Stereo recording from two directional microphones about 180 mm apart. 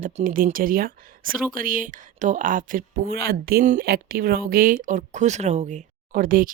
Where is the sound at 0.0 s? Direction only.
50° right (ahead or behind).